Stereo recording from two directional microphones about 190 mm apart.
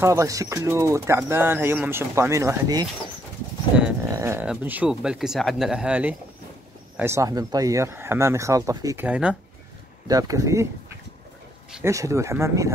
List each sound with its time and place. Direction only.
0.0 s speech: 15° right (ahead or behind)
4.0 s speech: 15° right (ahead or behind)
10.0 s speech: 20° right (ahead or behind)
11.8 s speech: 15° right (ahead or behind)